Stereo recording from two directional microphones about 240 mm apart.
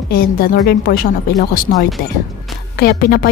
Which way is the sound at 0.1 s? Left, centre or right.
Left.